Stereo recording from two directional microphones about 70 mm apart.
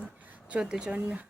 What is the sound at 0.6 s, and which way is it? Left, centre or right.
Speech, centre.